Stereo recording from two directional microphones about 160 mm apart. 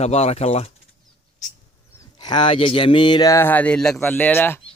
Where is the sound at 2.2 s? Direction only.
30° left (ahead or behind); by 4.6 s 10° left (ahead or behind).